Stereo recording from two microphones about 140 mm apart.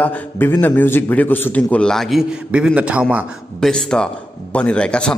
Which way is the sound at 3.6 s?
5° left (ahead or behind).